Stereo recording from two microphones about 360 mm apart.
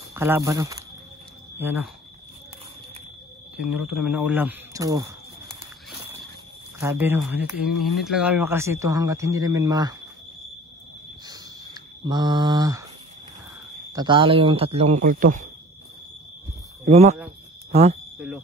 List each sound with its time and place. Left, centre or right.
0.1 s speech: centre
3.5 s speech: centre
6.8 s speech: centre
11.2 s a sound: centre
13.9 s speech: centre
16.8 s speech: centre
18.2 s speech: centre